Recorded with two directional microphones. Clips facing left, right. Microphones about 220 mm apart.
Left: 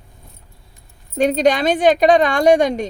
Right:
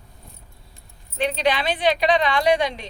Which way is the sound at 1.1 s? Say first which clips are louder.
Left 7 dB; 45° left (ahead or behind).